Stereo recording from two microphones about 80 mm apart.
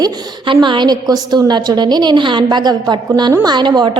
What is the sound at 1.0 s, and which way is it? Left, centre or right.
A woman's voice, right.